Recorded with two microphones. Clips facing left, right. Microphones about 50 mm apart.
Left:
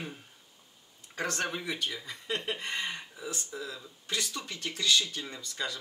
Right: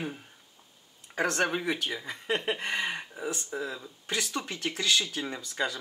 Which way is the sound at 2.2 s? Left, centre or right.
Right.